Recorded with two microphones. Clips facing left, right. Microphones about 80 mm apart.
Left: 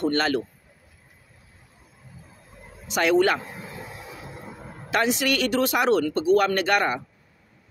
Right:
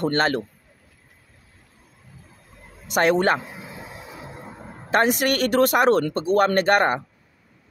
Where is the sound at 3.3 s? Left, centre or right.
Centre.